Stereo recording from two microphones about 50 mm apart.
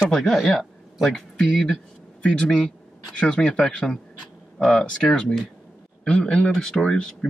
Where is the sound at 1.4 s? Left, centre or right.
Centre.